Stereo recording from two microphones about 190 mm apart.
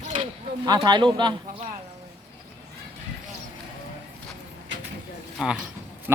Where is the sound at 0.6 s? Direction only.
20° right (ahead or behind).